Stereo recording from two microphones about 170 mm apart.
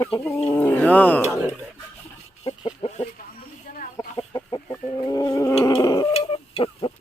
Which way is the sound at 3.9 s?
25° left (ahead or behind).